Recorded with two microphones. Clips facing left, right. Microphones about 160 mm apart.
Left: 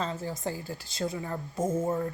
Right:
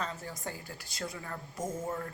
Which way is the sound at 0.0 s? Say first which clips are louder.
Left 6 dB; 25° left (ahead or behind).